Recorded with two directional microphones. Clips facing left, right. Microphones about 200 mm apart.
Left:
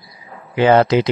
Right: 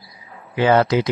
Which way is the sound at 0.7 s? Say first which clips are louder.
Left 3 dB; 25° left (ahead or behind).